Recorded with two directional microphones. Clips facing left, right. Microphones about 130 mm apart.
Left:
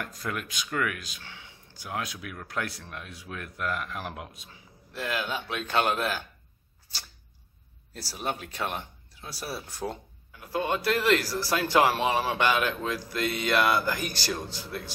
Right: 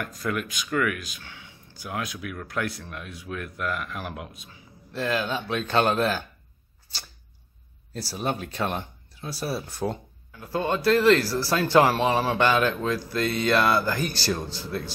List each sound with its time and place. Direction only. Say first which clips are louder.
0.0 s speech: right 5 dB; 25° left (ahead or behind)
4.9 s speech: right 5 dB; 10° left (ahead or behind)
8.1 s speech: right 4 dB; 5° left (ahead or behind)
9.3 s speech: right 6 dB; 35° right (ahead or behind)
10.7 s speech: right 6 dB; 10° left (ahead or behind)